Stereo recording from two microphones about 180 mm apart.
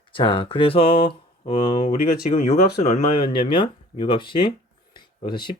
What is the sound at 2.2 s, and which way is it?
Speech, 35° left (ahead or behind).